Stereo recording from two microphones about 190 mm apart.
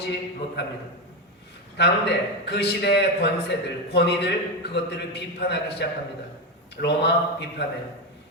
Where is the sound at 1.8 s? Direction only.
60° left (ahead or behind).